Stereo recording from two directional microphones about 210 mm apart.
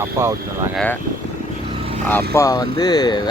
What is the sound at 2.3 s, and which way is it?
Speech, 15° left (ahead or behind).